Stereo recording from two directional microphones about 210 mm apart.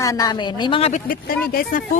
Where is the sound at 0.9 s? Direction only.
40° left (ahead or behind).